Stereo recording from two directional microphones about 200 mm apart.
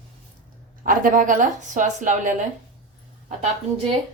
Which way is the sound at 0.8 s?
45° right (ahead or behind).